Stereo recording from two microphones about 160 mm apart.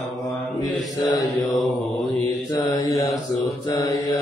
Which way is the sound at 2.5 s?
25° left (ahead or behind).